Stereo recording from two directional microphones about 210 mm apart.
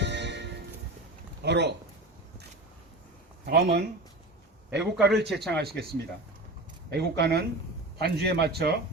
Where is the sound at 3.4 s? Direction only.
50° right (ahead or behind).